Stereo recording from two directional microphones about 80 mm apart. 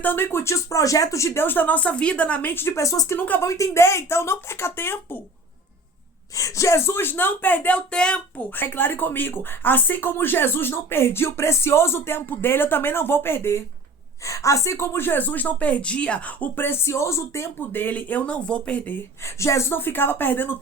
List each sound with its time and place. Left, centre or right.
0.0 s speech: left
3.2 s speech: left
3.4 s speech: left
6.3 s speech: left; by 8.2 s centre
8.4 s speech: left
14.3 s speech: left; by 19.0 s centre
19.2 s speech: left